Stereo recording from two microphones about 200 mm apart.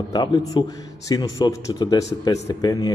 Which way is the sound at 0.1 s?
20° left (ahead or behind).